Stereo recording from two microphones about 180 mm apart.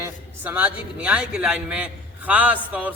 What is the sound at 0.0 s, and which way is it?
A man's voice, 10° right (ahead or behind).